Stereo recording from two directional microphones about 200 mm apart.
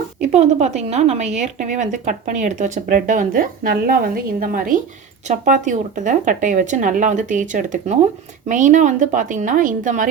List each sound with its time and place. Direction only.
0.2 s speech: 35° right (ahead or behind)